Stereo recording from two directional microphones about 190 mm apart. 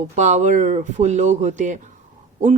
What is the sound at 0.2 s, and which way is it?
Speech, 40° right (ahead or behind).